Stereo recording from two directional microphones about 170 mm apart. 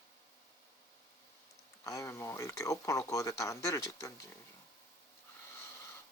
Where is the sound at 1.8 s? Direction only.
20° left (ahead or behind).